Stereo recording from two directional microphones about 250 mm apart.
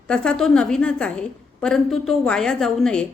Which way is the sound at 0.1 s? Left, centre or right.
Centre.